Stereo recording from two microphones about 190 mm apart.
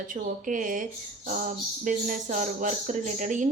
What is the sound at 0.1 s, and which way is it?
Speech, 45° right (ahead or behind).